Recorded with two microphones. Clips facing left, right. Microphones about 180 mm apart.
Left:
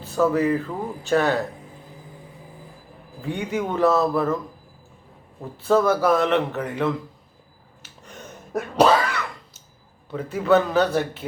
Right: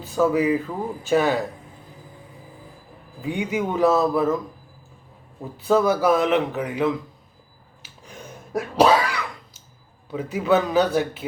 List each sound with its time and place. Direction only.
0.0 s a man's voice: centre (ahead or behind)
3.2 s a man's voice: 15° right (ahead or behind)
3.5 s a man's voice: centre (ahead or behind)
5.4 s a man's voice: centre (ahead or behind)
8.0 s cough: 10° right (ahead or behind)
10.1 s a man's voice: centre (ahead or behind)